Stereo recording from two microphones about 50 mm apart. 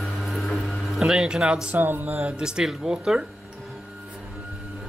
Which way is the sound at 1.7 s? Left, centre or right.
Right.